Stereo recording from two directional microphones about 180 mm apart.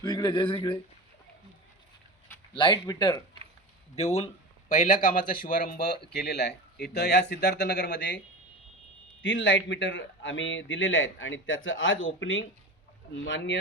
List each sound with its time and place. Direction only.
0.0 s speech: 25° left (ahead or behind)
2.6 s speech: 25° left (ahead or behind)
3.9 s speech: 35° left (ahead or behind); by 8.2 s 75° left (ahead or behind)
9.2 s a man's voice: 90° left